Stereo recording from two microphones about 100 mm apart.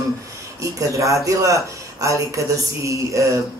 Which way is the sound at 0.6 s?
30° right (ahead or behind).